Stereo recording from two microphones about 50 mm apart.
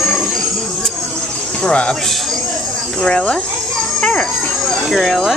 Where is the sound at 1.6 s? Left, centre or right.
Left.